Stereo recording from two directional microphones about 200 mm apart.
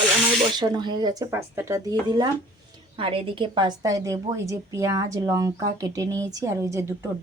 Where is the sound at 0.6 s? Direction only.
20° right (ahead or behind).